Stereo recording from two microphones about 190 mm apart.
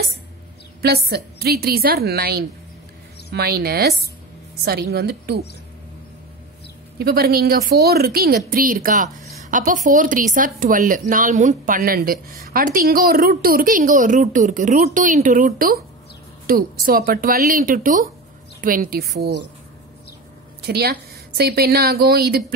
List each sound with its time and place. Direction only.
0.8 s a woman's voice: 55° right (ahead or behind)
7.0 s a woman's voice: 55° right (ahead or behind)
20.6 s a woman's voice: 55° right (ahead or behind)